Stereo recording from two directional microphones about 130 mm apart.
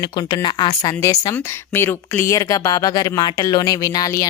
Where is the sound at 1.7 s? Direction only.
15° left (ahead or behind).